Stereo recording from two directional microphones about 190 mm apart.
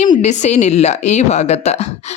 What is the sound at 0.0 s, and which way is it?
A woman's voice, 40° left (ahead or behind).